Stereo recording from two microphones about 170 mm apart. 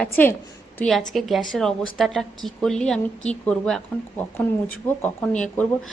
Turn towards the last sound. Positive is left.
turn(degrees=5)  # may be behind; listen again after turning